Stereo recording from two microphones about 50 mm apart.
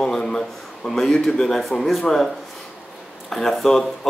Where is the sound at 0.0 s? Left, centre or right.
Centre.